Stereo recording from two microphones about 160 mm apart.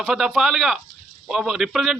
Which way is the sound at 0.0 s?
Centre (ahead or behind).